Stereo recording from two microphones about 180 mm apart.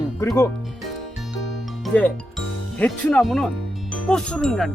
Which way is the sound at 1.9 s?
10° left (ahead or behind).